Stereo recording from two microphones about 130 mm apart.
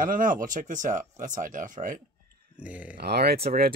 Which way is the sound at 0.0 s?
90° right.